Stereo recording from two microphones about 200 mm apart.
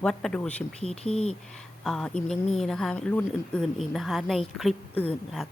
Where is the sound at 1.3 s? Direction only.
5° left (ahead or behind).